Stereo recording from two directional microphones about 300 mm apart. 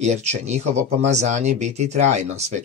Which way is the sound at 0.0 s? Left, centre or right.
Right.